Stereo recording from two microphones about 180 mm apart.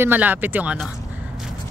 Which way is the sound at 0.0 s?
10° right (ahead or behind).